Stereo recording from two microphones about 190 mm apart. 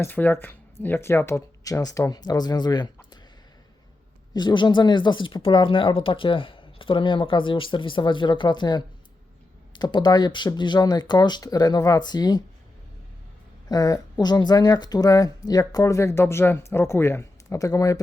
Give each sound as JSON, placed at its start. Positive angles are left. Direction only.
{"t": 0.0, "sound": "speech", "side_deg": 10}
{"t": 4.4, "sound": "speech", "side_deg": 25}
{"t": 13.7, "sound": "speech", "side_deg": 20}